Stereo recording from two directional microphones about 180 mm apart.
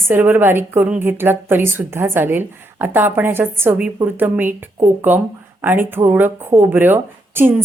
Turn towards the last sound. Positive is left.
turn(degrees=-10)  # may be behind; listen again after turning